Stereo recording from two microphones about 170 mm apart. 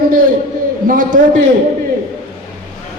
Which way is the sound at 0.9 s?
55° right (ahead or behind).